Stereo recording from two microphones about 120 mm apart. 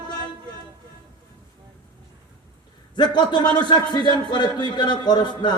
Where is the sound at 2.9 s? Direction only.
40° left (ahead or behind).